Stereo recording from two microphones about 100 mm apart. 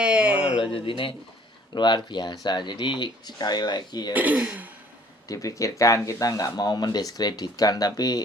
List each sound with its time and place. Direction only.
0.0 s a sound: 10° right (ahead or behind)
0.6 s speech: 60° left (ahead or behind)
1.7 s speech: 50° left (ahead or behind)
4.1 s speech: 15° right (ahead or behind)
5.3 s speech: 35° left (ahead or behind)